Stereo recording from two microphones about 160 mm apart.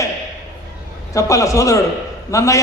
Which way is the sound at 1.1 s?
20° left (ahead or behind).